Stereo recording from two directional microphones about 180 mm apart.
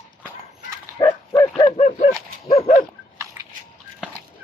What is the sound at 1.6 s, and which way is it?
Dog, 30° left (ahead or behind).